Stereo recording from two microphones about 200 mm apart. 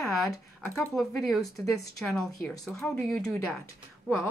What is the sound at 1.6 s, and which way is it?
Speech, 15° left (ahead or behind).